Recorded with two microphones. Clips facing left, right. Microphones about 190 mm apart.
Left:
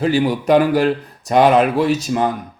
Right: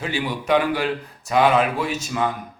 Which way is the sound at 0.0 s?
40° left (ahead or behind).